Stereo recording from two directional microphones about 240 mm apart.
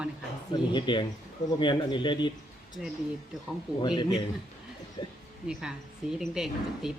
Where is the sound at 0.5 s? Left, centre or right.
Centre.